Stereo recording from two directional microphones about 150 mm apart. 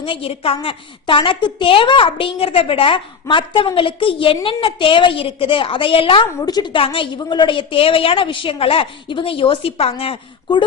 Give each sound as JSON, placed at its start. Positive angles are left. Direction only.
{"t": 0.0, "sound": "a woman's voice", "side_deg": 40}